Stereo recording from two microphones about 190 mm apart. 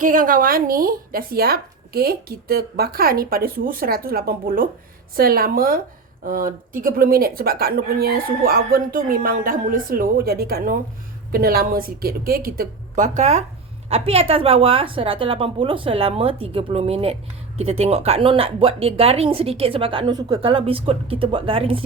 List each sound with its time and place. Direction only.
0.0 s speech: 45° right (ahead or behind); by 21.8 s 30° right (ahead or behind)